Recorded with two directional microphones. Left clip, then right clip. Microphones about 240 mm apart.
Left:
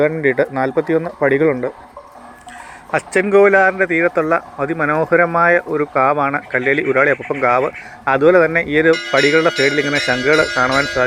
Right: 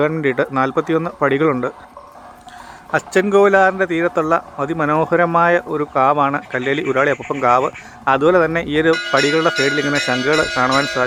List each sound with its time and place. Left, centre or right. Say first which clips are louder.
0.3 s speech: left 1 dB; centre
3.1 s a man's voice: even; centre
3.3 s speech: left 2 dB; centre
8.6 s a sound: left 2 dB; right
8.9 s speech: left 1 dB; centre